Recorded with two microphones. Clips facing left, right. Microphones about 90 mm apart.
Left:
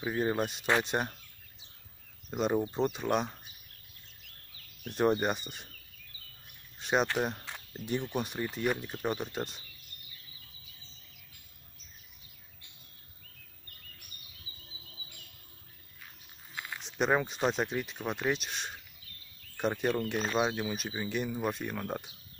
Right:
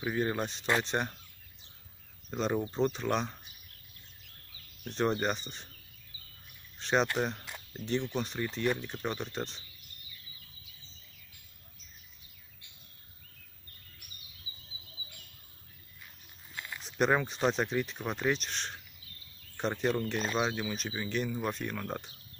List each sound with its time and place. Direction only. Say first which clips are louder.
0.0 s speech: left 1 dB; 10° left (ahead or behind)
2.3 s speech: left 2 dB; 10° left (ahead or behind)
4.8 s speech: left 2 dB; 10° left (ahead or behind)
6.8 s speech: even; 5° left (ahead or behind)
16.8 s speech: right 1 dB; 5° left (ahead or behind)